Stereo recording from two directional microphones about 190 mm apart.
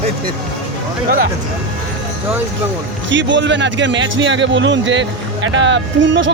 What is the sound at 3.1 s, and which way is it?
A man's voice, 75° right (ahead or behind).